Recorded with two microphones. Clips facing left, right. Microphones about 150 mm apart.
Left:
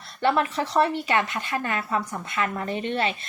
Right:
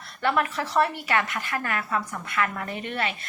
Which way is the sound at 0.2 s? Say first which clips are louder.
Left 2 dB; 25° left (ahead or behind).